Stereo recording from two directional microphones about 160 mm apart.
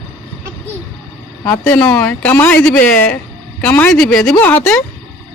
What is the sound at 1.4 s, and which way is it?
Speech, 10° left (ahead or behind).